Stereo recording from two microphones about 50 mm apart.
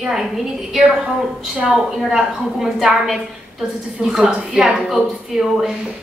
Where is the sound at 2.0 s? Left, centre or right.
Centre.